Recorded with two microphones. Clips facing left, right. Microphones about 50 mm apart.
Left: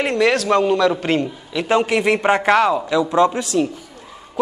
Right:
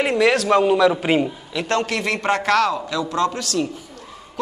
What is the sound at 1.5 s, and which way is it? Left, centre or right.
A man's voice, centre.